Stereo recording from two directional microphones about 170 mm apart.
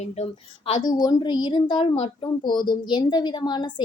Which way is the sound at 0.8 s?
25° left (ahead or behind).